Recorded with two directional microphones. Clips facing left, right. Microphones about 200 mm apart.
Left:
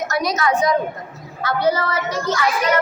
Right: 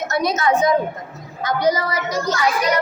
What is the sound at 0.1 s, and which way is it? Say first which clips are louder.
A woman's voice: right 3 dB; 25° right (ahead or behind).